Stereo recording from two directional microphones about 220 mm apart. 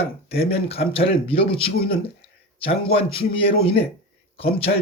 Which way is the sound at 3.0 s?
25° left (ahead or behind).